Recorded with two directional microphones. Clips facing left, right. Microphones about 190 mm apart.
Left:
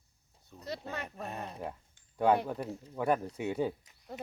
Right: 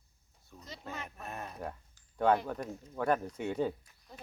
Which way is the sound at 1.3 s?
20° left (ahead or behind).